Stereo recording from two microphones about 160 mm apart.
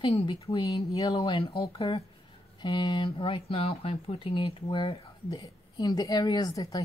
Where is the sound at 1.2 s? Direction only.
35° left (ahead or behind).